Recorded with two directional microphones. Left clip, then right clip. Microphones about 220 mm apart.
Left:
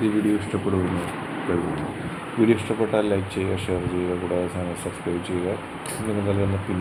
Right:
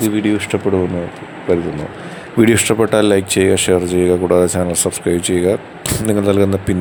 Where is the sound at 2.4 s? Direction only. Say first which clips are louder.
Right 9 dB; 50° right (ahead or behind).